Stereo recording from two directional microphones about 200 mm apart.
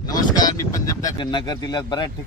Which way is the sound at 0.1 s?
20° left (ahead or behind).